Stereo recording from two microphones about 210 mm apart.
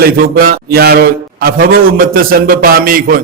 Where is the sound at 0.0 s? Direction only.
45° right (ahead or behind).